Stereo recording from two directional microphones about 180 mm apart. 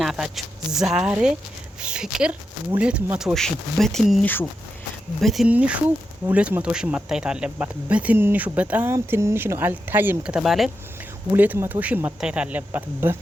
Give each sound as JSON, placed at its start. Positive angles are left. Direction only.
{"t": 0.0, "sound": "speech", "side_deg": 0}
{"t": 11.3, "sound": "speech", "side_deg": -10}